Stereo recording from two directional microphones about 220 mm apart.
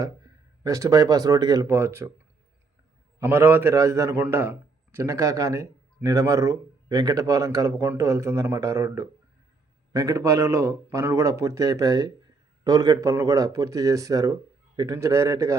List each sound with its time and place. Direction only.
0.6 s a man's voice: 15° right (ahead or behind)
3.2 s a man's voice: 10° right (ahead or behind)